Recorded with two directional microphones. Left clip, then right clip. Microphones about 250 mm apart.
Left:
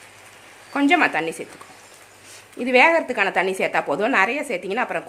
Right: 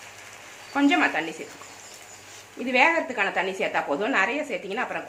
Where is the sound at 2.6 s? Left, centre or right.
Left.